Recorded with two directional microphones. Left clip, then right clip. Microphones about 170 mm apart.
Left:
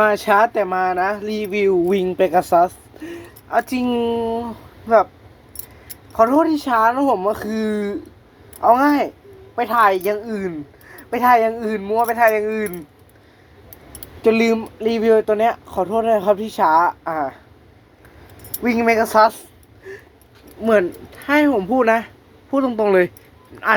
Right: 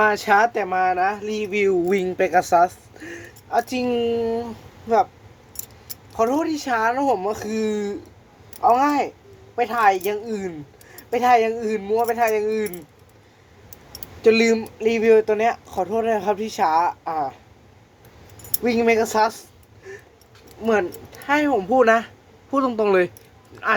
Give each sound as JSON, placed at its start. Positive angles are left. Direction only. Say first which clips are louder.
{"t": 0.0, "sound": "speech", "louder": "left 2 dB", "side_deg": 10}
{"t": 1.5, "sound": "speech", "louder": "left 3 dB", "side_deg": 5}
{"t": 6.1, "sound": "speech", "louder": "left 6 dB", "side_deg": 15}
{"t": 14.2, "sound": "speech", "louder": "even", "side_deg": 15}
{"t": 18.6, "sound": "speech", "louder": "left 2 dB", "side_deg": 10}
{"t": 20.7, "sound": "speech", "louder": "left 5 dB", "side_deg": 30}
{"t": 21.6, "sound": "speech", "louder": "even", "side_deg": 5}